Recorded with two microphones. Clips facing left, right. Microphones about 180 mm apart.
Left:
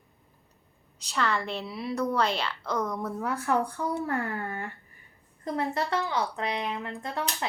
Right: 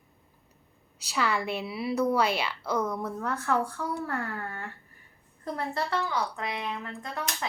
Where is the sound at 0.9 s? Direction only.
5° right (ahead or behind); by 4.1 s 20° left (ahead or behind).